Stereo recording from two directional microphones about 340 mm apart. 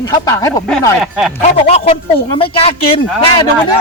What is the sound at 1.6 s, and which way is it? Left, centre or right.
Speech, centre.